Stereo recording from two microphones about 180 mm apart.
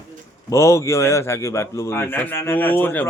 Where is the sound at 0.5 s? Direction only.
15° left (ahead or behind).